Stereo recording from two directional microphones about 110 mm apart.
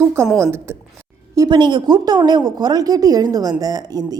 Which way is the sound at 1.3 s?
40° right (ahead or behind).